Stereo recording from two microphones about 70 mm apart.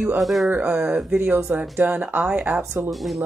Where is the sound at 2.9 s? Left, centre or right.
Centre.